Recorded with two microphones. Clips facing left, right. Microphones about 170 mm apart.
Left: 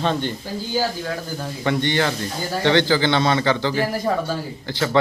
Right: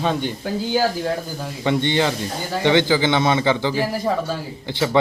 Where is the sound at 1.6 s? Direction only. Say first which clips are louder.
Right 2 dB; 20° right (ahead or behind); by 4.4 s centre (ahead or behind).